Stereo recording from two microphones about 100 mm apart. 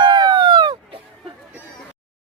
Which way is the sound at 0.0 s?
45° right (ahead or behind).